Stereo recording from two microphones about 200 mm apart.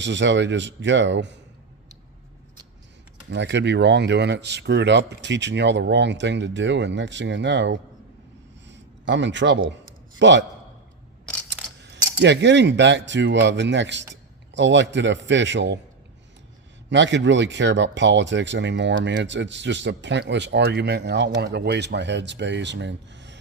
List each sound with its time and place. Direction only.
0.0 s speech: 65° right (ahead or behind)
3.3 s speech: 60° right (ahead or behind)
8.6 s a sound: 60° right (ahead or behind)
10.2 s a man's voice: 65° right (ahead or behind)
11.8 s a man's voice: 60° right (ahead or behind)
16.9 s speech: 65° right (ahead or behind)